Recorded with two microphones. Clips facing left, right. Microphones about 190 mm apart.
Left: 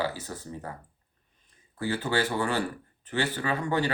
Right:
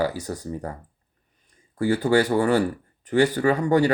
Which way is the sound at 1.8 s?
45° right (ahead or behind).